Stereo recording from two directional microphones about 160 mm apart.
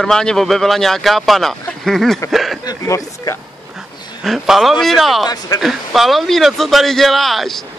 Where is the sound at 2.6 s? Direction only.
20° left (ahead or behind).